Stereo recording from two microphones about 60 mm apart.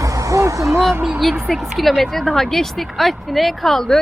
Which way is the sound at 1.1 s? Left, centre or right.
Centre.